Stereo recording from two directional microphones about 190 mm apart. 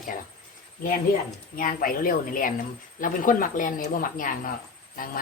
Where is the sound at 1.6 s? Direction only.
45° left (ahead or behind).